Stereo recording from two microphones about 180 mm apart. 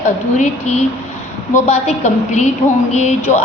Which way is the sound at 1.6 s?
40° left (ahead or behind).